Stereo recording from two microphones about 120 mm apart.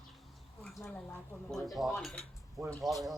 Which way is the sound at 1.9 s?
10° left (ahead or behind).